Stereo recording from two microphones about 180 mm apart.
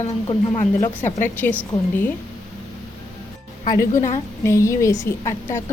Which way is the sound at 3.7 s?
50° left (ahead or behind).